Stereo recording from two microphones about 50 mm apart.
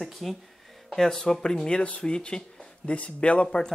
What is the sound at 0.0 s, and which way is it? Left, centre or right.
Speech, centre.